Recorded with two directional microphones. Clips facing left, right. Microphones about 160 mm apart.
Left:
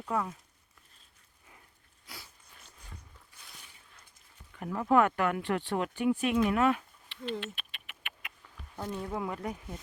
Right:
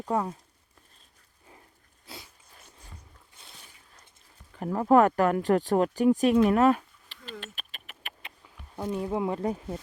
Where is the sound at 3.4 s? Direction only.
25° right (ahead or behind).